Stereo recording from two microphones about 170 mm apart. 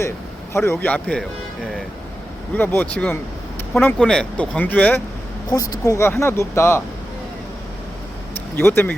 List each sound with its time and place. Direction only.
0.5 s speech: 15° left (ahead or behind)
2.6 s speech: 10° left (ahead or behind)
5.5 s speech: 20° left (ahead or behind)
8.5 s speech: 10° left (ahead or behind)